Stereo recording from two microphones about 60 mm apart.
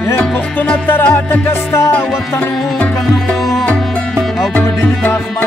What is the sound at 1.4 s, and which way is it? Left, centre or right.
Music, left.